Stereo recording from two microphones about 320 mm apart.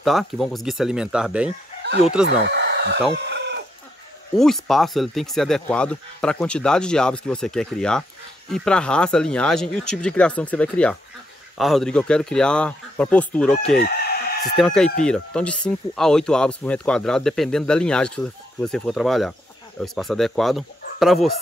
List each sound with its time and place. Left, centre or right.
0.0 s speech: centre
2.2 s speech: right
3.3 s chicken: right
4.4 s speech: centre
13.7 s chicken: left
14.6 s speech: centre